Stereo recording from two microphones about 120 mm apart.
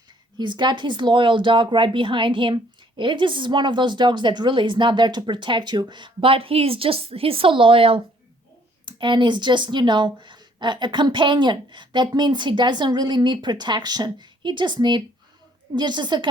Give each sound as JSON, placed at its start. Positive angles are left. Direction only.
{"t": 0.3, "sound": "speech", "side_deg": -40}